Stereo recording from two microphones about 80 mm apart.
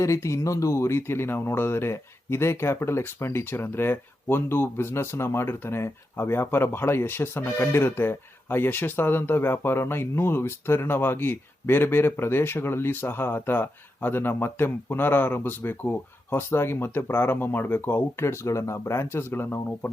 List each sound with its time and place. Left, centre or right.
0.0 s speech: left